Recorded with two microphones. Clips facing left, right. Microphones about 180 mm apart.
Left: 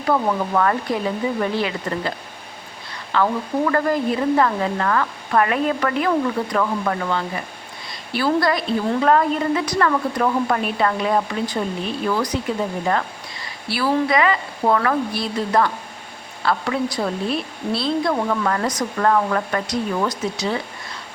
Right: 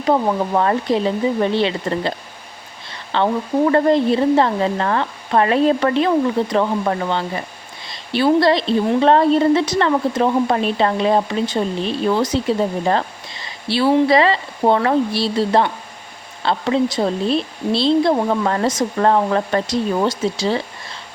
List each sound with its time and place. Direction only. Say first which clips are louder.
0.0 s speech: right 3 dB; 20° right (ahead or behind)
3.1 s speech: right 3 dB; 30° right (ahead or behind)